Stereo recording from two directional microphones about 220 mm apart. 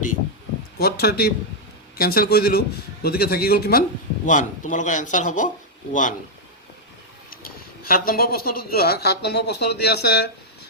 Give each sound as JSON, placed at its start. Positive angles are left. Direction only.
{"t": 0.8, "sound": "speech", "side_deg": 45}
{"t": 7.4, "sound": "speech", "side_deg": 40}